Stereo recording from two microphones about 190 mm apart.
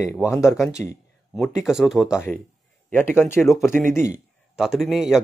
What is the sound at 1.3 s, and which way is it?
Speech, centre (ahead or behind).